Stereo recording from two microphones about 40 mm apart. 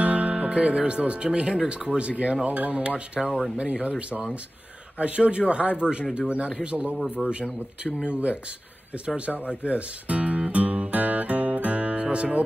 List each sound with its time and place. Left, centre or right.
0.0 s music: right
0.3 s speech: right
3.2 s speech: centre
3.5 s speech: right
4.9 s speech: right
7.2 s speech: centre
7.8 s speech: right
9.7 s guitar: right